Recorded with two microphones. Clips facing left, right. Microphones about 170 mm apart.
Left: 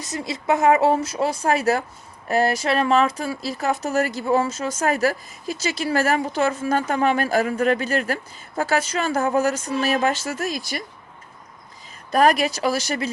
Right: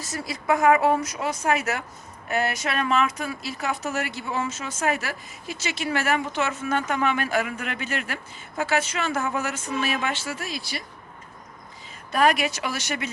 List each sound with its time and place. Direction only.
0.0 s speech: 20° left (ahead or behind); by 10.8 s 45° left (ahead or behind)
12.1 s speech: 40° left (ahead or behind)